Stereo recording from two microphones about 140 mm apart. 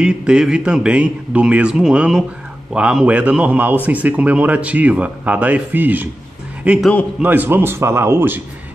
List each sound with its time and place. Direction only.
0.0 s a man's voice: 5° right (ahead or behind)